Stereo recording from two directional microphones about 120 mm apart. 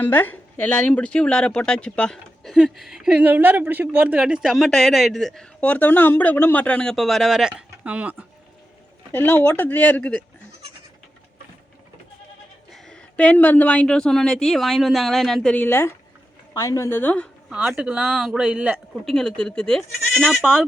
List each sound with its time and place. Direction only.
0.0 s speech: 15° left (ahead or behind); by 8.1 s 10° right (ahead or behind)
9.1 s speech: 15° left (ahead or behind)
12.7 s speech: 5° left (ahead or behind)
15.5 s a woman's voice: 20° left (ahead or behind)
17.7 s speech: 5° right (ahead or behind)
19.0 s speech: 5° left (ahead or behind)